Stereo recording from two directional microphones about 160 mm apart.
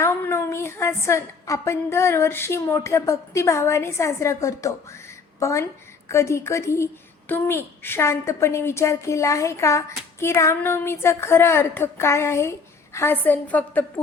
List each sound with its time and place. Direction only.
0.0 s a woman's voice: 15° left (ahead or behind)